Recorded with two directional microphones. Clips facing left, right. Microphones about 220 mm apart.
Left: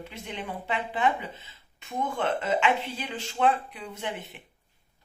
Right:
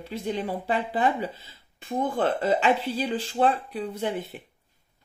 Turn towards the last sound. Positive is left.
turn(degrees=-35)  # may be behind; listen again after turning